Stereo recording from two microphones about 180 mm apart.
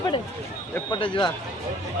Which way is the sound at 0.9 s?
30° left (ahead or behind).